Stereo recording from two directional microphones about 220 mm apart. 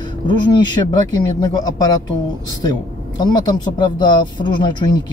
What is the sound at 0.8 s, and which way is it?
Speech, 20° left (ahead or behind).